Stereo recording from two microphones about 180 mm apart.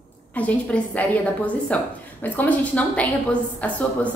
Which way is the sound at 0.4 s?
10° left (ahead or behind).